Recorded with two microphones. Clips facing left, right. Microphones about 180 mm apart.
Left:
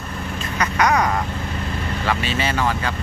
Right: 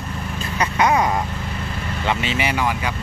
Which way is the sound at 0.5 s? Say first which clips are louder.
Right 1 dB; 25° right (ahead or behind).